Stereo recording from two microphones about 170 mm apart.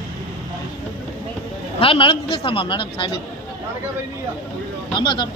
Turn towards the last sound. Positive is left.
turn(degrees=25)  # may be behind; listen again after turning